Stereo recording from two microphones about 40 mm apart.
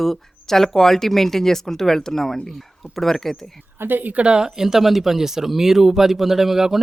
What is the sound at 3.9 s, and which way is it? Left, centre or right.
Speech, right.